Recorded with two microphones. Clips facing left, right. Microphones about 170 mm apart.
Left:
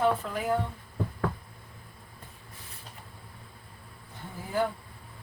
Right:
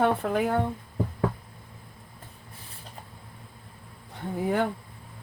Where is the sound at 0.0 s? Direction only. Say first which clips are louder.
Right 4 dB; 65° right (ahead or behind).